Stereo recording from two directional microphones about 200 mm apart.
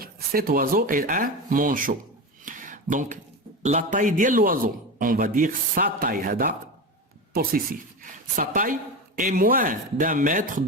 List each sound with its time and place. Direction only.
0.0 s a man's voice: 45° right (ahead or behind)
2.4 s a sound: 40° right (ahead or behind)
3.6 s a man's voice: 35° right (ahead or behind)